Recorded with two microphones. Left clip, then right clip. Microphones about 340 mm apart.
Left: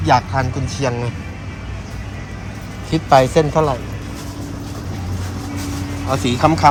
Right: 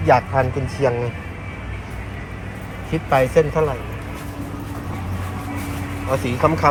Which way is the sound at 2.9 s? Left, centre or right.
Centre.